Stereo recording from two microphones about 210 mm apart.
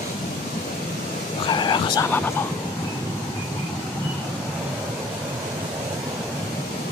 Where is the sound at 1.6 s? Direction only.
20° left (ahead or behind).